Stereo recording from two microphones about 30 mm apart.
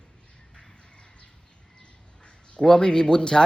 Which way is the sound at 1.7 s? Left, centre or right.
Left.